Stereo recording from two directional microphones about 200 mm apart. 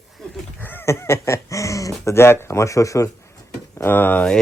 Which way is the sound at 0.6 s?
10° left (ahead or behind).